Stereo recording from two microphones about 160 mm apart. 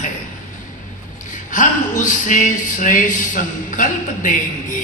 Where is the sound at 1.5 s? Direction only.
55° left (ahead or behind).